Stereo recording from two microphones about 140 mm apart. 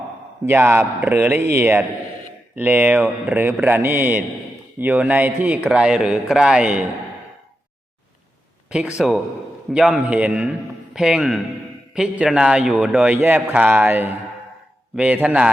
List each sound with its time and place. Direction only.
0.4 s a man's voice: 15° right (ahead or behind)
9.0 s a man's voice: centre (ahead or behind)